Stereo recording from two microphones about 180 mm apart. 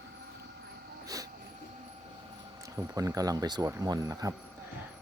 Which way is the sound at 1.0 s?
20° right (ahead or behind).